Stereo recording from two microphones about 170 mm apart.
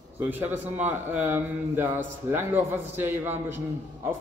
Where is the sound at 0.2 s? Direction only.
10° right (ahead or behind).